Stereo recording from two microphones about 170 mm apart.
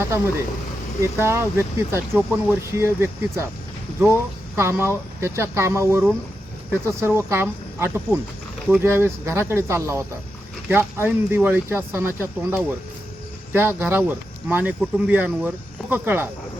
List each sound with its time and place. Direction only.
1.2 s speech: 15° right (ahead or behind)